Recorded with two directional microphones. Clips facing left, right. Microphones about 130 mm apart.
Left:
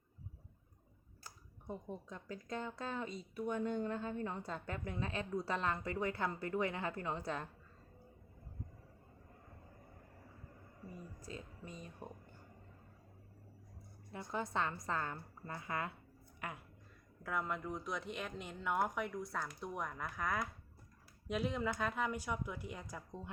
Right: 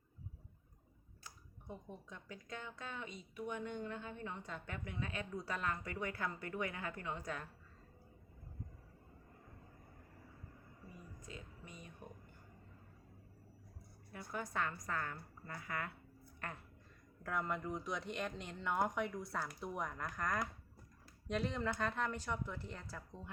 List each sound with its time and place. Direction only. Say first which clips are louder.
1.2 s speech: left 2 dB; 35° left (ahead or behind)
11.2 s speech: left 4 dB; 35° left (ahead or behind)
14.1 s a woman's voice: left 4 dB; 25° left (ahead or behind)
16.4 s a woman's voice: left 2 dB; 10° left (ahead or behind)